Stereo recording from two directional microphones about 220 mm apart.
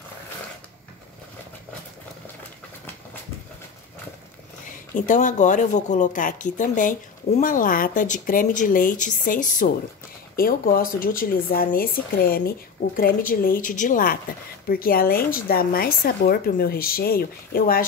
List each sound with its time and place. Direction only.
4.6 s speech: 35° left (ahead or behind)